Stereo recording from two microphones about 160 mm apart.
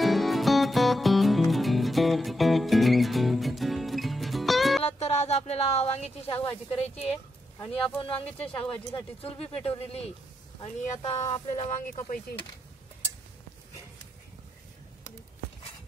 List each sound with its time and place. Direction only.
0.0 s music: centre (ahead or behind)
4.8 s speech: 40° left (ahead or behind)
8.3 s speech: 10° left (ahead or behind)
9.2 s speech: 35° left (ahead or behind)
11.9 s speech: 60° left (ahead or behind)